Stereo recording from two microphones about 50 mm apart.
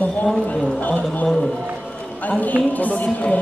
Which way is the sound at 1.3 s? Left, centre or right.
Centre.